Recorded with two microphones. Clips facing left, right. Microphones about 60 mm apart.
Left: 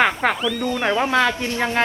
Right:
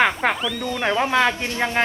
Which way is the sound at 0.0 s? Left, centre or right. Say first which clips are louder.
Left 1 dB; centre.